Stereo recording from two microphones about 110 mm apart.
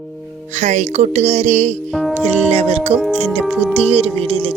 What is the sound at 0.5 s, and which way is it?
Speech, 90° right.